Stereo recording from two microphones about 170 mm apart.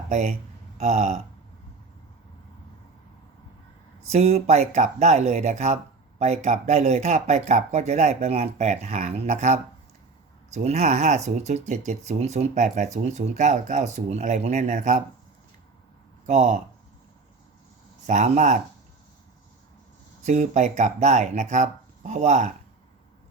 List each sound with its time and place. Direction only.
0.1 s speech: 45° right (ahead or behind)
4.1 s speech: 40° right (ahead or behind)
16.2 s speech: 45° right (ahead or behind)
18.0 s speech: 45° right (ahead or behind)
20.2 s speech: 45° right (ahead or behind)